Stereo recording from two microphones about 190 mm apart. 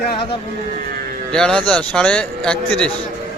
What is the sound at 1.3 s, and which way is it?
A man's voice, 5° left (ahead or behind).